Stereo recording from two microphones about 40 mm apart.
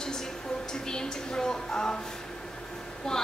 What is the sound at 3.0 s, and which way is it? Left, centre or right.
Speech, centre.